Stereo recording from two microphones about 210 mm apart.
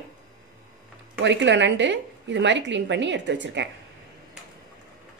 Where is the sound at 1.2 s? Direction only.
60° right (ahead or behind).